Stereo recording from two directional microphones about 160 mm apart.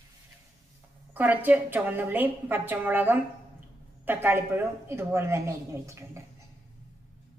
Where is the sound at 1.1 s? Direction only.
10° right (ahead or behind).